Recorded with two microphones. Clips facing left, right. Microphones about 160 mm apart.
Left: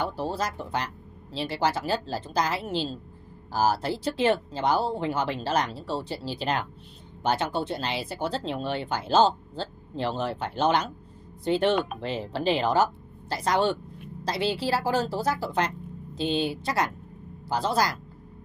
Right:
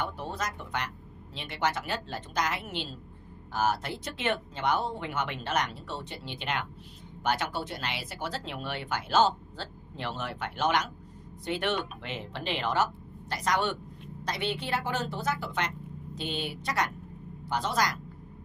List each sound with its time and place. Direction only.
0.0 s speech: 30° left (ahead or behind)